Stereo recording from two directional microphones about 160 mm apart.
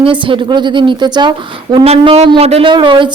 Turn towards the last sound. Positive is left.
turn(degrees=-30)  # may be behind; listen again after turning